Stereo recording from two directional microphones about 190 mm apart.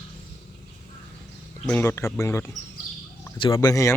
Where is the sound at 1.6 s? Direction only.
10° left (ahead or behind).